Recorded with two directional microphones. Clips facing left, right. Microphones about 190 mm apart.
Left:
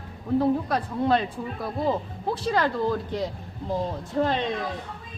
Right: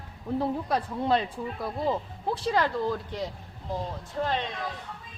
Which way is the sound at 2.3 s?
25° right (ahead or behind).